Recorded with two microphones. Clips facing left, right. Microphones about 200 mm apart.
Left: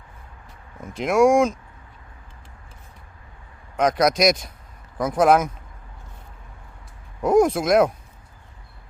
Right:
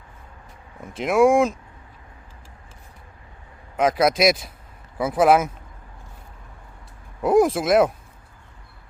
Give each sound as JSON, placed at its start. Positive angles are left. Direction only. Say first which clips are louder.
{"t": 0.8, "sound": "speech", "louder": "even", "side_deg": 0}
{"t": 3.8, "sound": "speech", "louder": "even", "side_deg": -5}
{"t": 7.2, "sound": "speech", "louder": "even", "side_deg": -5}